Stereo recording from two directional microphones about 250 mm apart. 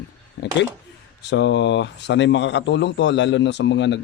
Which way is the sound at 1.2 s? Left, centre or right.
Left.